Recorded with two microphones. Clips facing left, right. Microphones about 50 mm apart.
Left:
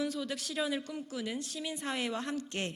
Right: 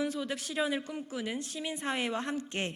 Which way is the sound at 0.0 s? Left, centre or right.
Centre.